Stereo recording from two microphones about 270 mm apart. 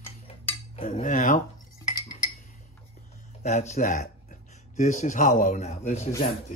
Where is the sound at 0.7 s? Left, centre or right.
Left.